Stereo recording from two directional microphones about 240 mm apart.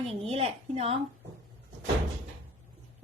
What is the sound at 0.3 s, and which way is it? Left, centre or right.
Speech, right.